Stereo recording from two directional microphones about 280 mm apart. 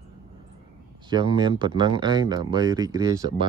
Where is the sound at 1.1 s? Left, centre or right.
Centre.